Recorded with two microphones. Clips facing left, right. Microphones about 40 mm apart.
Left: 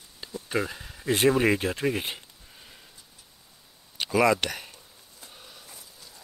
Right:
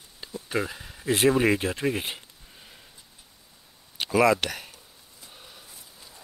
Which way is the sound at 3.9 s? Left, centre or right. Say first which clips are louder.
Right 1 dB; centre.